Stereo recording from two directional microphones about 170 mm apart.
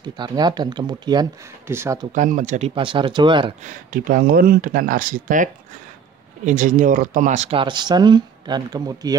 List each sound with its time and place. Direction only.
0.0 s speech: 25° right (ahead or behind)
1.7 s speech: 15° right (ahead or behind)
2.1 s speech: 50° right (ahead or behind)
2.7 s speech: 30° right (ahead or behind)
3.6 s speech: 50° right (ahead or behind); by 9.1 s 25° right (ahead or behind)